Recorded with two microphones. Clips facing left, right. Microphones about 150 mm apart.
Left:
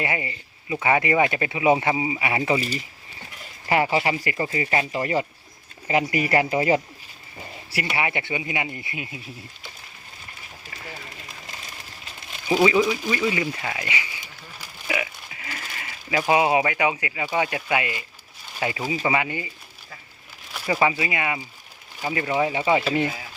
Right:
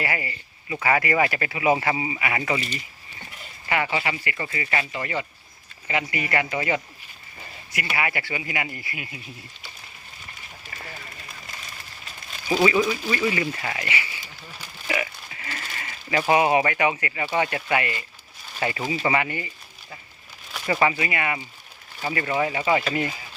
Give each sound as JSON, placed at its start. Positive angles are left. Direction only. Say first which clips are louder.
{"t": 0.0, "sound": "speech", "louder": "left 1 dB", "side_deg": 25}
{"t": 7.9, "sound": "speech", "louder": "left 1 dB", "side_deg": 25}
{"t": 12.5, "sound": "speech", "louder": "left 2 dB", "side_deg": 15}
{"t": 13.3, "sound": "a sound", "louder": "even", "side_deg": 10}
{"t": 18.6, "sound": "speech", "louder": "even", "side_deg": 10}
{"t": 20.5, "sound": "speech", "louder": "even", "side_deg": 10}